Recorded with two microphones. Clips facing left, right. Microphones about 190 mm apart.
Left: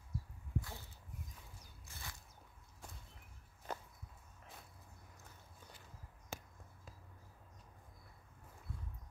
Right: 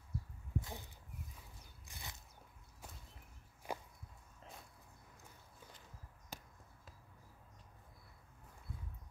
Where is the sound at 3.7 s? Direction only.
10° right (ahead or behind).